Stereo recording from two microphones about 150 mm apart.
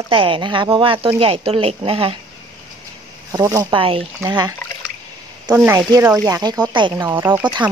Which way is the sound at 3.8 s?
35° right (ahead or behind).